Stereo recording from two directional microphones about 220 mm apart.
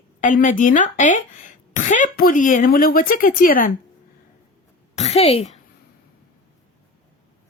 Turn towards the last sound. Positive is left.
turn(degrees=30)  # may be behind; listen again after turning